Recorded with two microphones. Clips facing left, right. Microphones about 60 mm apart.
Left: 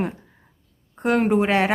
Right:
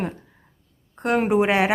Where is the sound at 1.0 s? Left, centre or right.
Centre.